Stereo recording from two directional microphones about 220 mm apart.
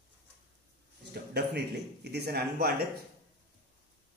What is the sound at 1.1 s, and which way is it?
A man's voice, 50° right (ahead or behind).